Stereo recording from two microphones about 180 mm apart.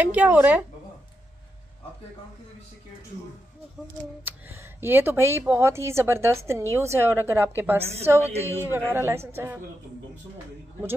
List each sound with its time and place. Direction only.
0.0 s speech: 10° right (ahead or behind)
4.2 s speech: 10° right (ahead or behind)
8.2 s a woman's voice: 35° right (ahead or behind)
8.7 s speech: 10° right (ahead or behind)